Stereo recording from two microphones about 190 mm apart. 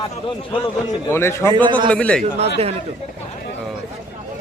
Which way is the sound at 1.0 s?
15° left (ahead or behind).